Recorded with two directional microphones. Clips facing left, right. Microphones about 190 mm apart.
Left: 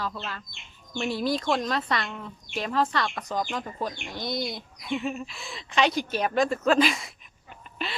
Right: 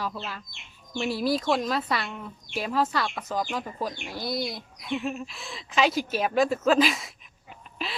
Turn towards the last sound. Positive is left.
turn(degrees=0)  # may be behind; listen again after turning